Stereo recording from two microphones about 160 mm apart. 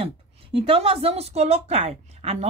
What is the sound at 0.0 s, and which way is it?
A woman's voice, 35° right (ahead or behind).